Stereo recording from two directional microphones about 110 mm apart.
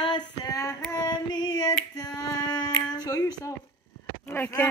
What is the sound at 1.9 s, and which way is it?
Female singing, 35° left (ahead or behind).